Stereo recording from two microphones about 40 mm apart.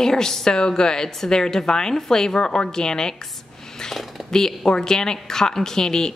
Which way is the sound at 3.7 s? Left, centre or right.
Centre.